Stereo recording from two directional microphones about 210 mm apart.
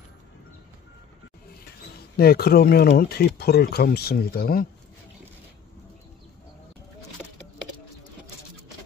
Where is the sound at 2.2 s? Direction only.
45° left (ahead or behind).